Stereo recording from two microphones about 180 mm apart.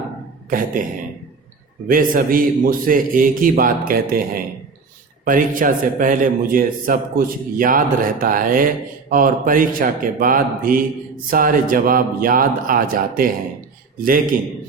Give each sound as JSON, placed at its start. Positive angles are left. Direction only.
{"t": 0.5, "sound": "a man's voice", "side_deg": -50}
{"t": 1.9, "sound": "a man's voice", "side_deg": -50}